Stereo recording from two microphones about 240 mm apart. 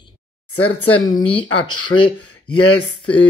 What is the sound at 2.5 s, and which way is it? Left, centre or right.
Speech, left.